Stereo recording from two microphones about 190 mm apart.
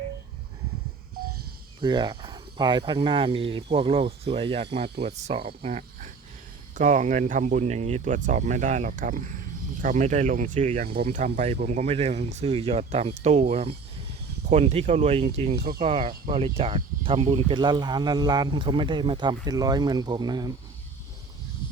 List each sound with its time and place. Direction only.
1.8 s speech: 25° right (ahead or behind); by 10.8 s 40° right (ahead or behind)
10.8 s speech: 55° right (ahead or behind); by 15.5 s 35° right (ahead or behind)
15.5 s speech: 55° right (ahead or behind)
15.8 s speech: 30° right (ahead or behind)